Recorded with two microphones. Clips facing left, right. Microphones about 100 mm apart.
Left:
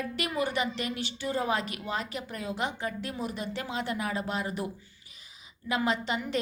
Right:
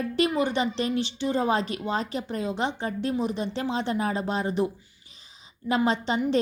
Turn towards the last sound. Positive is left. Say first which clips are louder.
# right 5 dB
turn(degrees=-30)  # may be behind; listen again after turning